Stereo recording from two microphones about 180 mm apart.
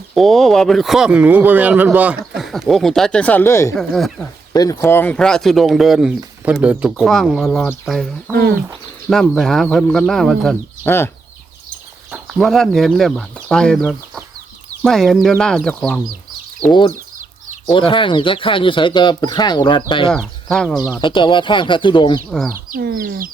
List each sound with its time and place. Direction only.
0.1 s speech: centre (ahead or behind)
3.8 s speech: centre (ahead or behind)
4.5 s speech: 20° left (ahead or behind); by 8.1 s centre (ahead or behind)
8.3 s speech: 60° right (ahead or behind)
9.0 s speech: centre (ahead or behind)
10.8 s speech: 15° left (ahead or behind)
12.1 s speech: centre (ahead or behind)
16.9 s chicken: 45° right (ahead or behind)
17.7 s speech: 30° left (ahead or behind)
20.1 s speech: 5° left (ahead or behind)
21.0 s speech: 25° left (ahead or behind)
22.7 s speech: 50° right (ahead or behind)